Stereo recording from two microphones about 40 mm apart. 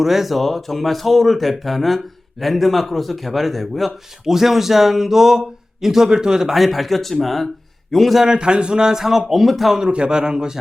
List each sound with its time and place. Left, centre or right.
0.0 s a man's voice: centre
6.5 s a man's voice: centre
8.2 s a man's voice: right; by 9.8 s centre
9.8 s a man's voice: right